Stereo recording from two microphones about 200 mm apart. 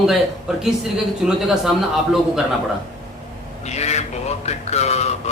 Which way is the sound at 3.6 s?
35° left (ahead or behind).